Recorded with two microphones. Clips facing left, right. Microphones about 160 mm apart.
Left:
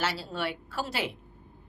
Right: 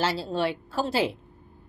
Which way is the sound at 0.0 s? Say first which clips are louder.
Right 6 dB; 30° right (ahead or behind).